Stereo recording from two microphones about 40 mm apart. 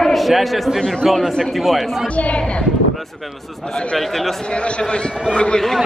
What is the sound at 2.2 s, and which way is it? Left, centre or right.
Speech, left.